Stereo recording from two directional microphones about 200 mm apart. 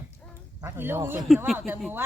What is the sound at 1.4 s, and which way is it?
Speech, centre (ahead or behind).